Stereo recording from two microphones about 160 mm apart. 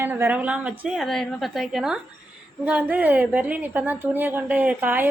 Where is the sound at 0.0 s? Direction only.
10° right (ahead or behind).